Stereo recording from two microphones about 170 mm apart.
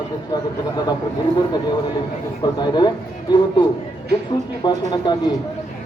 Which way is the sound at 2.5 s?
25° left (ahead or behind).